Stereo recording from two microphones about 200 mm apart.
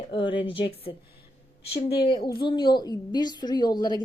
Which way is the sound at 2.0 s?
25° left (ahead or behind).